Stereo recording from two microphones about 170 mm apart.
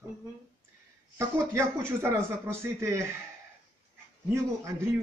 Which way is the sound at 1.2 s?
15° right (ahead or behind).